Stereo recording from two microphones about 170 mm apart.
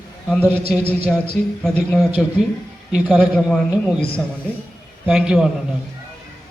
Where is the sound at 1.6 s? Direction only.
5° left (ahead or behind).